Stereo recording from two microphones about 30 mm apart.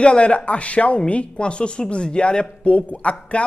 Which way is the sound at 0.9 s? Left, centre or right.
Left.